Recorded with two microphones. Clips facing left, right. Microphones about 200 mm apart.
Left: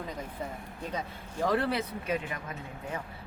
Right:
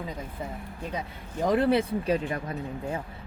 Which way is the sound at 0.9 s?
20° right (ahead or behind).